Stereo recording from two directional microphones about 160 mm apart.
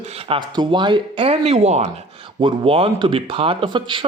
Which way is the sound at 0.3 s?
30° right (ahead or behind).